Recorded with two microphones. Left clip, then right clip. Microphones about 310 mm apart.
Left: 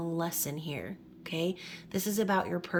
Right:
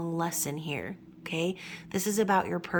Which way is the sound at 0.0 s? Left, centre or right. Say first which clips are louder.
Right 2 dB; centre.